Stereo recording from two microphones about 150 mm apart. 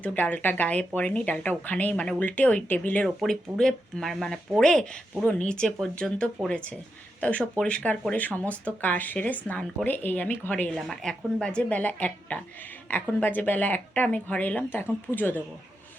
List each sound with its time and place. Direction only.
0.0 s speech: 10° left (ahead or behind)